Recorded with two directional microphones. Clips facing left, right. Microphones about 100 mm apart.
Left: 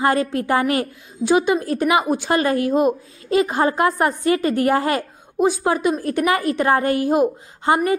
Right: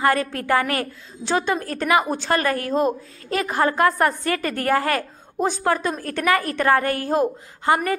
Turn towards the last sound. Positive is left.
turn(degrees=20)  # may be behind; listen again after turning